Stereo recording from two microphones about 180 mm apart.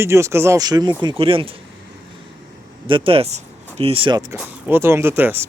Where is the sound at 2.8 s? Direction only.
30° right (ahead or behind).